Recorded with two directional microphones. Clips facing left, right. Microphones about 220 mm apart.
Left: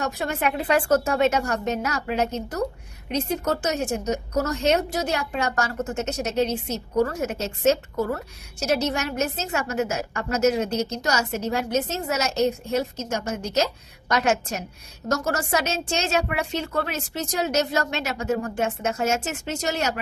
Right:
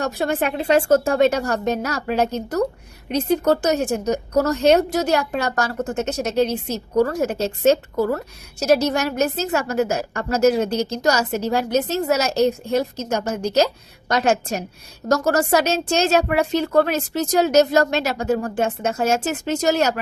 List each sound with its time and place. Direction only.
0.0 s a woman's voice: 35° right (ahead or behind)